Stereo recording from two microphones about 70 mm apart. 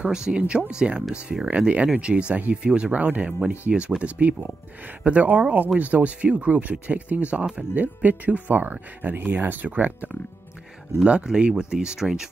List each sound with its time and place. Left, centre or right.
0.0 s speech: centre
11.0 s speech: centre